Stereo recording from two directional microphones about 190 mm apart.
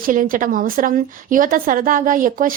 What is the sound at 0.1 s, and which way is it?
A woman's voice, 45° right (ahead or behind).